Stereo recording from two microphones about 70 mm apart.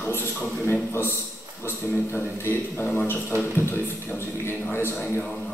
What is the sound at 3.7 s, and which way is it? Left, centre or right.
A man's voice, left.